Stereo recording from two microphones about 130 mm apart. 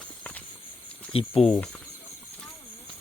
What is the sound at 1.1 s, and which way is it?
Speech, 45° left (ahead or behind).